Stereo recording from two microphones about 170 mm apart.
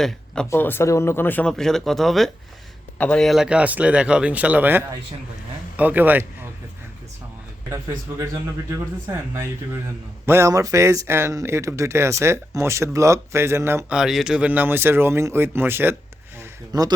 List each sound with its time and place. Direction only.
0.5 s speech: 15° left (ahead or behind); by 6.2 s 10° right (ahead or behind)
8.1 s speech: 15° right (ahead or behind)
13.9 s speech: 5° right (ahead or behind)
16.4 s a sound: 20° right (ahead or behind)